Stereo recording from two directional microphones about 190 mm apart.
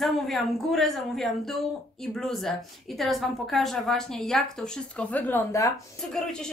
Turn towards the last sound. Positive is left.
turn(degrees=0)  # may be behind; listen again after turning